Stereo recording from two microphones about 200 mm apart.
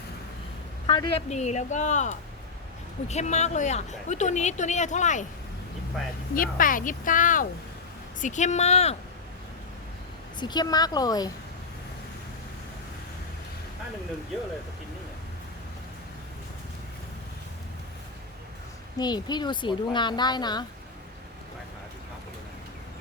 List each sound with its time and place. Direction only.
0.9 s speech: 20° left (ahead or behind)
1.3 s speech: 35° left (ahead or behind)
6.3 s speech: 45° left (ahead or behind)
10.4 s speech: 20° left (ahead or behind)
18.9 s speech: 20° left (ahead or behind)